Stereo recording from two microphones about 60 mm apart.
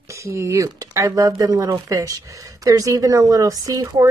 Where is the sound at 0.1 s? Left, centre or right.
Right.